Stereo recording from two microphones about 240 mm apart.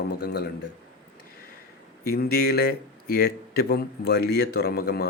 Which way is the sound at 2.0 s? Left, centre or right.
Left.